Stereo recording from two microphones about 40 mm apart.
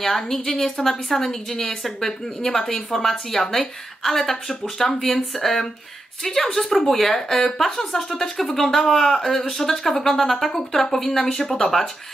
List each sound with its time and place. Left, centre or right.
0.0 s a woman's voice: centre